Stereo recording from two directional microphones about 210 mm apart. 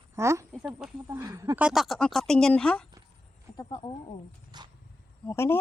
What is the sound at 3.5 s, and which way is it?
Speech, 20° left (ahead or behind).